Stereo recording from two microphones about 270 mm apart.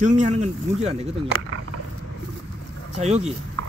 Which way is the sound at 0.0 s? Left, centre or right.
Right.